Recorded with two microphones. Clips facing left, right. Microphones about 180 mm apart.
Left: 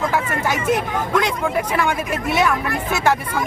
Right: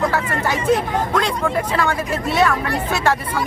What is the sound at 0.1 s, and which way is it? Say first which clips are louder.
Speech: even; 15° left (ahead or behind).